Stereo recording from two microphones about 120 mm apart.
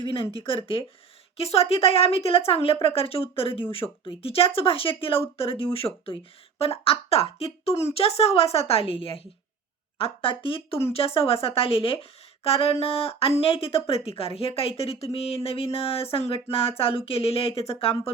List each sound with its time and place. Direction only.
0.3 s a woman's voice: 50° left (ahead or behind)
12.4 s a sound: 50° left (ahead or behind)
12.8 s speech: 55° left (ahead or behind)